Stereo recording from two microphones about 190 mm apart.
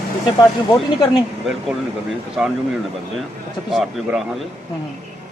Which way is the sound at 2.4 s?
Centre (ahead or behind).